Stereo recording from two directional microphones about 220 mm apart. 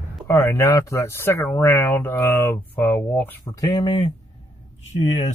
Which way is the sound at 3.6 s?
20° left (ahead or behind).